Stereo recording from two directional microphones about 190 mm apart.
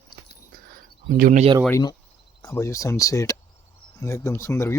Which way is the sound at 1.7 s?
20° left (ahead or behind).